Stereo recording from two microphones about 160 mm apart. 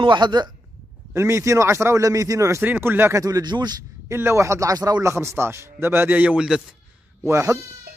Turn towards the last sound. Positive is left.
turn(degrees=-15)  # may be behind; listen again after turning